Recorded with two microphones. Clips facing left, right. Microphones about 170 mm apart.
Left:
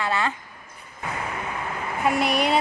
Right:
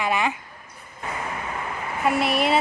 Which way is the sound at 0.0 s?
15° right (ahead or behind).